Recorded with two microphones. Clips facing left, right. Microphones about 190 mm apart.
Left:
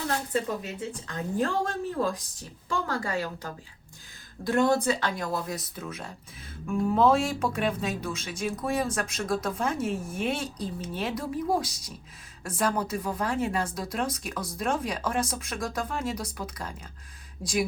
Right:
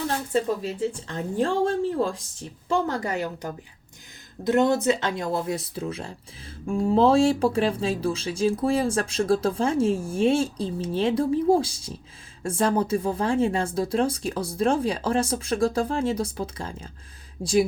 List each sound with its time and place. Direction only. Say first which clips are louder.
0.6 s speech: right 8 dB; 30° right (ahead or behind)